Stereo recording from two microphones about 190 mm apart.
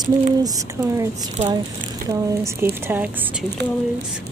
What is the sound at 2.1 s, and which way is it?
Speech, 15° right (ahead or behind).